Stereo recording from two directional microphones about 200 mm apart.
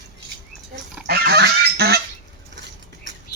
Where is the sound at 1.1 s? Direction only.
55° right (ahead or behind).